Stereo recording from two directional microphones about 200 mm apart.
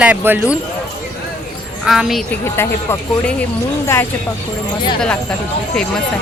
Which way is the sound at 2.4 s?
10° left (ahead or behind).